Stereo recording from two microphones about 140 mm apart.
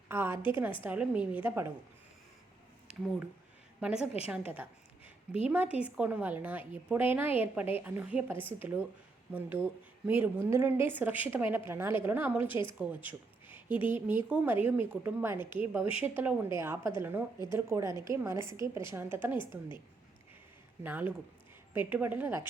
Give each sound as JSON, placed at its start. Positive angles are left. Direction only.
{"t": 0.1, "sound": "a woman's voice", "side_deg": -15}
{"t": 3.8, "sound": "a woman's voice", "side_deg": -5}
{"t": 8.4, "sound": "a woman's voice", "side_deg": 40}
{"t": 8.6, "sound": "a woman's voice", "side_deg": -15}
{"t": 12.5, "sound": "a woman's voice", "side_deg": 35}
{"t": 13.9, "sound": "a woman's voice", "side_deg": -15}
{"t": 19.4, "sound": "a woman's voice", "side_deg": 35}
{"t": 20.8, "sound": "a woman's voice", "side_deg": -10}